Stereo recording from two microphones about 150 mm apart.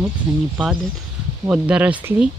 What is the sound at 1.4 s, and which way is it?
Speech, 10° right (ahead or behind).